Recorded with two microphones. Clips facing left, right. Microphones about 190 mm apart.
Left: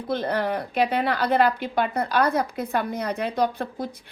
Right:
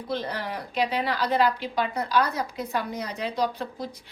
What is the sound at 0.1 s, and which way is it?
A woman's voice, 55° left (ahead or behind).